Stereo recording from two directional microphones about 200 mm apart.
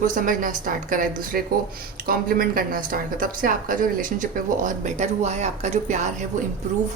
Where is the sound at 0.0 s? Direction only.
40° right (ahead or behind).